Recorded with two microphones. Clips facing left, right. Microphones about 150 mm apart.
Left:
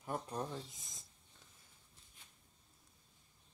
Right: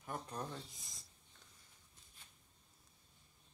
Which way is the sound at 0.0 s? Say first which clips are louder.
Left 4 dB; 20° left (ahead or behind).